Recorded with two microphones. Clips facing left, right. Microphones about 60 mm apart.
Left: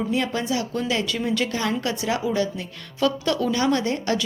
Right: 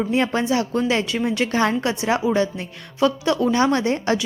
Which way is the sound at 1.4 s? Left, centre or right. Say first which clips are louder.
Right 6 dB; right.